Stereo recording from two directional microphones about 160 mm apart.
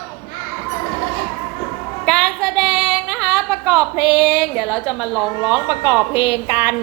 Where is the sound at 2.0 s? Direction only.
Centre (ahead or behind).